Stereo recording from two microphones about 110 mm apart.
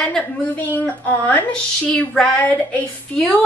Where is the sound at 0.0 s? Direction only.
10° left (ahead or behind).